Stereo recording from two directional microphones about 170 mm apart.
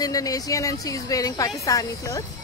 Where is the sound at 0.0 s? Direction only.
20° left (ahead or behind).